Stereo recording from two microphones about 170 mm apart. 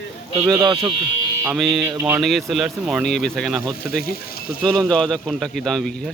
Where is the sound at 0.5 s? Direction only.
30° right (ahead or behind).